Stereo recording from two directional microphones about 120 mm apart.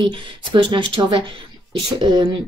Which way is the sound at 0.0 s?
40° right (ahead or behind).